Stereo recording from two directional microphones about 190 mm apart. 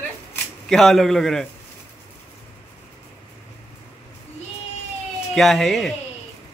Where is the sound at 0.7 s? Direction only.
Centre (ahead or behind).